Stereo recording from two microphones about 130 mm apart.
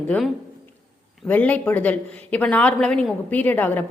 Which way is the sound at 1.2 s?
10° left (ahead or behind).